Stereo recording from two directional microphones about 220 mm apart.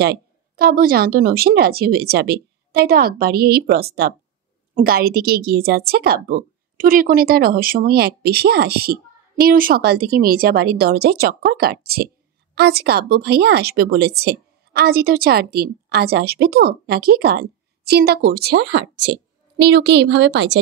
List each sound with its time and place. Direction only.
0.0 s a woman's voice: 45° right (ahead or behind)